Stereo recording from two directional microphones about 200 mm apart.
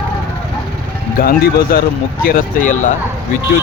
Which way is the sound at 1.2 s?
50° left (ahead or behind).